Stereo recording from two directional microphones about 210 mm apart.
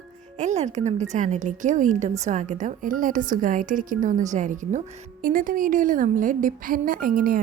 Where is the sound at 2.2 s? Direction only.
35° right (ahead or behind).